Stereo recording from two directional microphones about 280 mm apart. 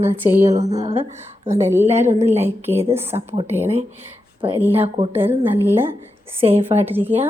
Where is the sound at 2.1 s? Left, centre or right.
Right.